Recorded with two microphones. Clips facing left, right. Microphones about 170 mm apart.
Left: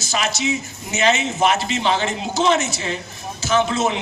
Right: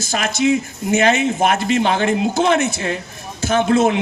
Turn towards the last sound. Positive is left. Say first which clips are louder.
# right 4 dB
turn(degrees=-55)  # may be behind; listen again after turning